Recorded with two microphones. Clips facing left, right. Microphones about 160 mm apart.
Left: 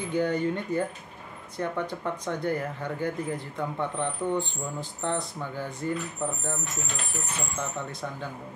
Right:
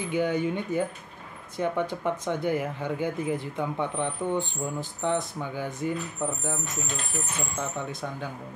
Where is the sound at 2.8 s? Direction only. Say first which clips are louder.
Right 1 dB; 10° right (ahead or behind).